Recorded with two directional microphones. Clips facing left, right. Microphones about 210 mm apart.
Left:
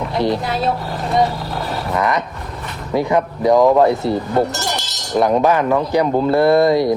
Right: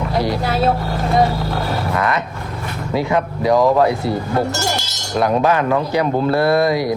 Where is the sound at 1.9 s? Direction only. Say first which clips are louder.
Left 1 dB; 15° left (ahead or behind).